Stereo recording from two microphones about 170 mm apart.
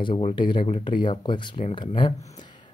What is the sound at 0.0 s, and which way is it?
Speech, 35° left (ahead or behind).